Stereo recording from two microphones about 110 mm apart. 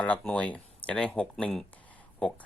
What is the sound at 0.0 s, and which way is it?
Speech, 10° left (ahead or behind).